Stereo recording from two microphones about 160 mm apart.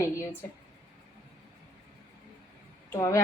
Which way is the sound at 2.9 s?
20° left (ahead or behind).